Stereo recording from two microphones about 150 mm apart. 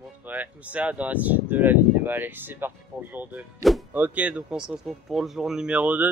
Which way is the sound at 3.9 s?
10° right (ahead or behind).